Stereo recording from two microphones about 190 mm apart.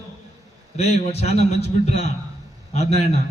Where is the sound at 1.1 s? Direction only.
30° left (ahead or behind).